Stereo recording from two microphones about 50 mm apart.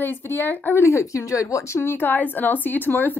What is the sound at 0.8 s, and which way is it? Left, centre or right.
Speech, left.